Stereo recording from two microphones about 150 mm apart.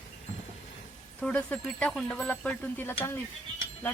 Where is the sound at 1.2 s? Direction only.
10° left (ahead or behind).